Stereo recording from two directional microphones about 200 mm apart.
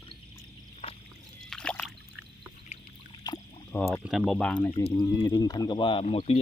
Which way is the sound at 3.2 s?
20° left (ahead or behind).